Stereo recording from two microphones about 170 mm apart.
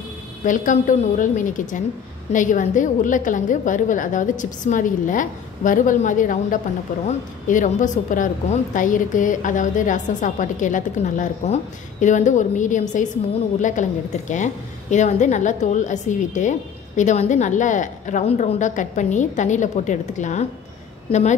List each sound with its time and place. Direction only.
0.4 s a woman's voice: 50° left (ahead or behind)